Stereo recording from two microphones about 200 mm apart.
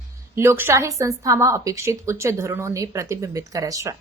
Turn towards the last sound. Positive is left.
turn(degrees=-15)  # may be behind; listen again after turning